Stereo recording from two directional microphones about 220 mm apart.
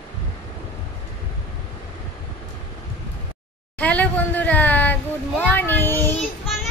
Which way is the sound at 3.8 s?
5° left (ahead or behind).